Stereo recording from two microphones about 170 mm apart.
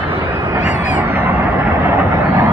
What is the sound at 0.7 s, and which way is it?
Honk, 45° left (ahead or behind).